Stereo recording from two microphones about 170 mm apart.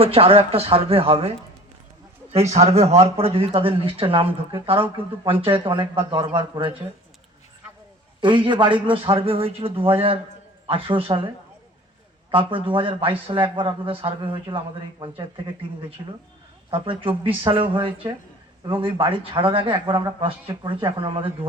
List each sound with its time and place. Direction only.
0.0 s speech: 35° right (ahead or behind)
2.3 s speech: 40° right (ahead or behind)
8.2 s speech: 30° right (ahead or behind)
12.3 s a man's voice: 30° right (ahead or behind)